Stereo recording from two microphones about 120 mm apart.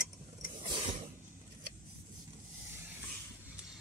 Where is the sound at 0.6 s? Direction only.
45° right (ahead or behind).